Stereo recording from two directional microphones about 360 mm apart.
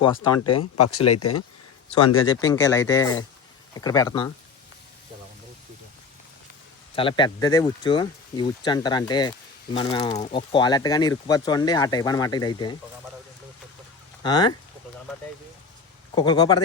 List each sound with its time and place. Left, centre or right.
0.3 s speech: left
2.2 s speech: centre
6.9 s speech: centre
14.2 s speech: centre
16.1 s speech: centre